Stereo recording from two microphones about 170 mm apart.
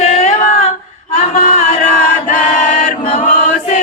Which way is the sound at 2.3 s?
45° left (ahead or behind).